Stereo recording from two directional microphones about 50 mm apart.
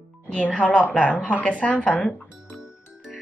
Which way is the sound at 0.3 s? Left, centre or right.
Left.